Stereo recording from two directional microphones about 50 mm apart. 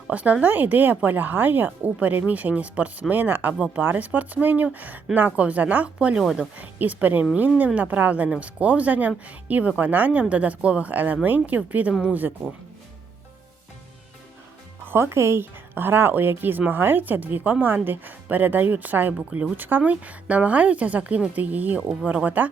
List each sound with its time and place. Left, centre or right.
0.1 s speech: right
6.1 s speech: centre
6.6 s speech: right
14.8 s speech: right
19.1 s speech: right
19.5 s speech: right